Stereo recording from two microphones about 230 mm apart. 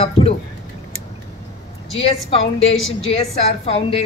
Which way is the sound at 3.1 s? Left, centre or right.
Left.